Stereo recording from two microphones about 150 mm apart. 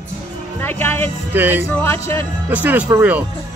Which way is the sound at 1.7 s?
15° left (ahead or behind).